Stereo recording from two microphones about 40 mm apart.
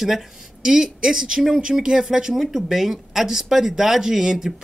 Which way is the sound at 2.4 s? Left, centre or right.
Centre.